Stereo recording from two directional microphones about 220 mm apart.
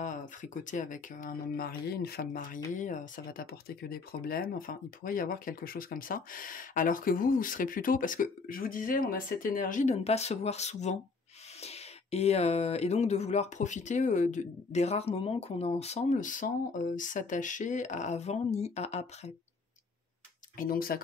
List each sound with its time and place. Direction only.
0.0 s speech: 35° left (ahead or behind)
20.5 s speech: 40° left (ahead or behind)